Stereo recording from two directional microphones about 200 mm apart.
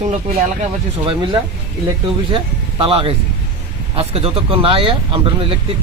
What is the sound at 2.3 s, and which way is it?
Speech, 30° right (ahead or behind).